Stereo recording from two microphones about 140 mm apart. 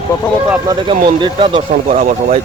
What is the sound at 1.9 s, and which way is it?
Speech, 65° right (ahead or behind).